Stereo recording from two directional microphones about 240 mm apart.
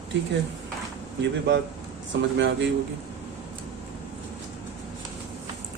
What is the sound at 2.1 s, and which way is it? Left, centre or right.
Speech, right.